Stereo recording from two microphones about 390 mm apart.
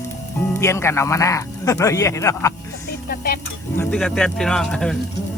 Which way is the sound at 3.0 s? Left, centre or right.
Left.